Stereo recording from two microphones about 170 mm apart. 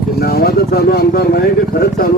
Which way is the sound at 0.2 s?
65° left (ahead or behind).